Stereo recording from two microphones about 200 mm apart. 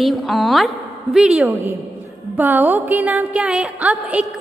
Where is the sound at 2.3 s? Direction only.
10° right (ahead or behind).